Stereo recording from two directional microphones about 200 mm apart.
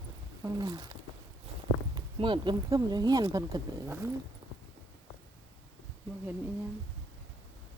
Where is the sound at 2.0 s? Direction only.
25° right (ahead or behind).